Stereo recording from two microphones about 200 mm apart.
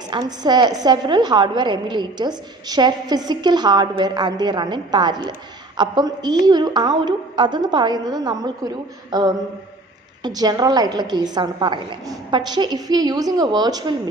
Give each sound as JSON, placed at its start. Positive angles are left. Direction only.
{"t": 0.1, "sound": "a woman's voice", "side_deg": -20}